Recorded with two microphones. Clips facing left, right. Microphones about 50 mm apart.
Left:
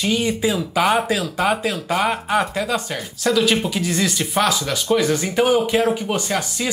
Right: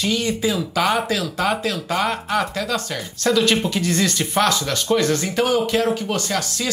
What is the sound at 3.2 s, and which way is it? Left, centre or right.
Speech, centre.